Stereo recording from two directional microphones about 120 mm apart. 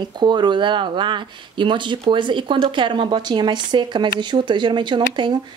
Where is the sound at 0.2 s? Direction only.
40° right (ahead or behind).